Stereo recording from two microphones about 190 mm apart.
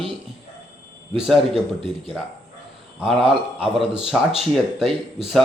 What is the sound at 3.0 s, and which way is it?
Speech, centre (ahead or behind).